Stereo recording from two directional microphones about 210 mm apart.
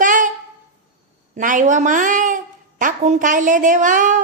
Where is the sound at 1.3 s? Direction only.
35° right (ahead or behind).